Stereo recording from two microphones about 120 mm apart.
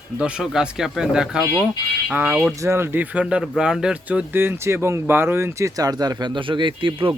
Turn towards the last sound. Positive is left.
turn(degrees=-45)  # may be behind; listen again after turning